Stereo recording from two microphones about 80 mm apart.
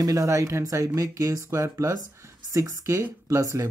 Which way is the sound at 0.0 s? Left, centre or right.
Right.